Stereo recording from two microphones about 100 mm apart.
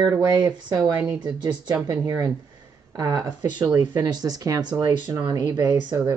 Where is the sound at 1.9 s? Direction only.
30° right (ahead or behind).